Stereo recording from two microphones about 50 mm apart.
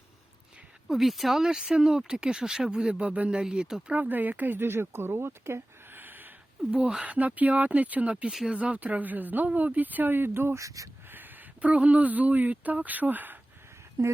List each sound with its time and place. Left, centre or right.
0.9 s speech: centre; by 3.4 s right
3.4 s speech: centre
3.9 s speech: right
6.0 s a sound: right
6.7 s speech: centre
7.0 s speech: right
11.6 s speech: right
14.0 s speech: right